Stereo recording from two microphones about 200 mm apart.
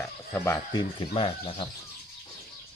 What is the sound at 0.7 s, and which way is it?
Speech, 25° left (ahead or behind).